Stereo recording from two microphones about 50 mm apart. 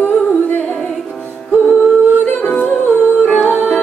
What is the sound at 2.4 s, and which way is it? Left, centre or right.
Music, left.